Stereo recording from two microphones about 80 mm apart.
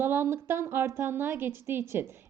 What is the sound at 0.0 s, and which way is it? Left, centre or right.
A woman's voice, right.